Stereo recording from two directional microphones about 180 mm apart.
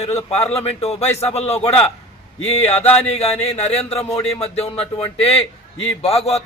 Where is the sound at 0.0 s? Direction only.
35° left (ahead or behind).